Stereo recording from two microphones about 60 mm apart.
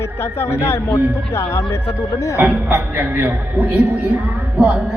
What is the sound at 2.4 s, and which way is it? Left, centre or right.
A man's voice, right.